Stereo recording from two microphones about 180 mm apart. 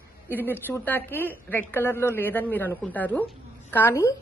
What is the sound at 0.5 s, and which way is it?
A woman's voice, 10° left (ahead or behind).